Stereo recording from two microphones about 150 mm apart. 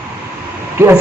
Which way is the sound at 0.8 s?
15° right (ahead or behind).